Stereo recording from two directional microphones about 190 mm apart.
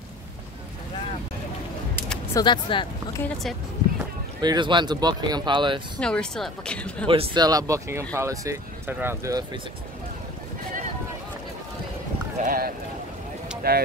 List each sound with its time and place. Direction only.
2.3 s speech: 25° left (ahead or behind)
3.2 s speech: 10° left (ahead or behind)
4.4 s speech: 25° right (ahead or behind)
5.9 s speech: 5° left (ahead or behind)
7.1 s speech: 25° right (ahead or behind)
12.4 s speech: 50° right (ahead or behind)